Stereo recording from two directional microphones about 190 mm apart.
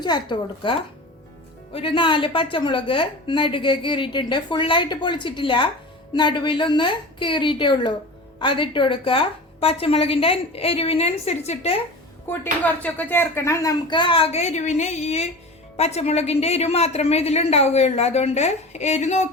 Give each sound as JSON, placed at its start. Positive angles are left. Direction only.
{"t": 0.0, "sound": "a woman's voice", "side_deg": 25}
{"t": 12.3, "sound": "a woman's voice", "side_deg": 10}